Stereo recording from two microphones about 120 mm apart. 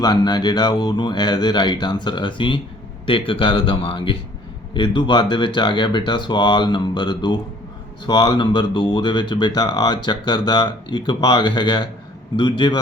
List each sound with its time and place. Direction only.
0.0 s speech: 35° left (ahead or behind)